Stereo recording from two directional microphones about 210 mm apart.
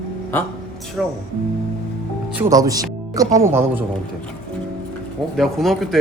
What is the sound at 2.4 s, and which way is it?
Speech, 15° right (ahead or behind).